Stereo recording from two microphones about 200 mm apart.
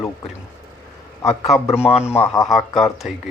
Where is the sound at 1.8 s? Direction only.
5° right (ahead or behind).